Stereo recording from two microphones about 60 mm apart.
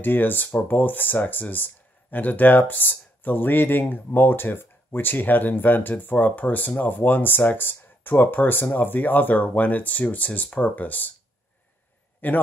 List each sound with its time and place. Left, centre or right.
0.0 s speech: left
12.2 s speech: left